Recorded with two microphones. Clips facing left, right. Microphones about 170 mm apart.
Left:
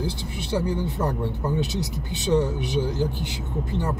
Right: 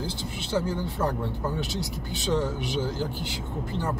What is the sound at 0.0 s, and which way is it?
Speech, 15° left (ahead or behind).